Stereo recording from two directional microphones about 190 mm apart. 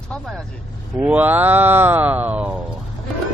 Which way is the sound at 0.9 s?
5° right (ahead or behind).